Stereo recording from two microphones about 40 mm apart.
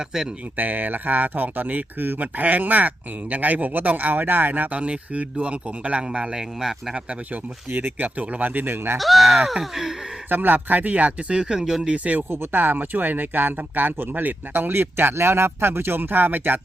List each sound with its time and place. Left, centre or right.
0.5 s speech: right
4.7 s a man's voice: right
6.1 s a man's voice: right
6.6 s gasp: centre
7.7 s speech: right
7.9 s speech: right
9.0 s speech: centre
9.5 s gasp: centre
10.2 s speech: right
11.3 s gasp: centre
12.1 s a man's voice: right
12.5 s speech: right